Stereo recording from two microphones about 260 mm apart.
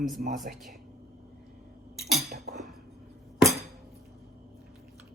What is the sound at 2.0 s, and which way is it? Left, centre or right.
Cutlery, centre.